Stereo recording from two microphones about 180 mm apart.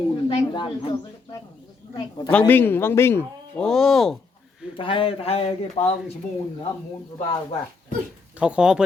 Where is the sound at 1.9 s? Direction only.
25° left (ahead or behind).